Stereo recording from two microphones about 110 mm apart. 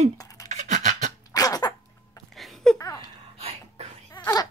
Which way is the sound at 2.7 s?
30° left (ahead or behind).